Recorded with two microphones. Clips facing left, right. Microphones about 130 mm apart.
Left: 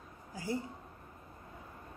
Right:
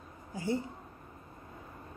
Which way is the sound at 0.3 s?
25° right (ahead or behind).